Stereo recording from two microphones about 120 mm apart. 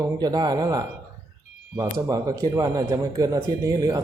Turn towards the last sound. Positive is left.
turn(degrees=-30)  # may be behind; listen again after turning